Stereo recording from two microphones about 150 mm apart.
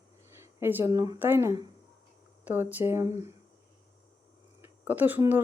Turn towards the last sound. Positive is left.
turn(degrees=-15)  # may be behind; listen again after turning